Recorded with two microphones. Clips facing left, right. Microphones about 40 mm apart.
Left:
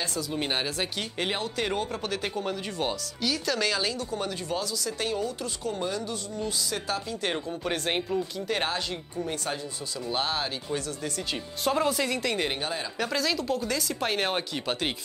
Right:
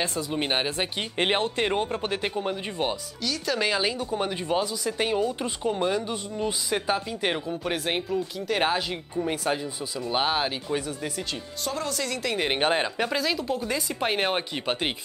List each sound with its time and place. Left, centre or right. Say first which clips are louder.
0.0 s speech: right 3 dB; right
1.2 s speech: right 6 dB; right; by 8.6 s centre
9.3 s speech: right 7 dB; centre
11.6 s speech: left 5 dB; centre
12.5 s speech: right 8 dB; right
12.9 s speech: right 2 dB; centre